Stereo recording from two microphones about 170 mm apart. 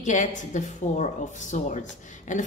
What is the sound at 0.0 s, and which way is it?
A woman's voice, 45° left (ahead or behind).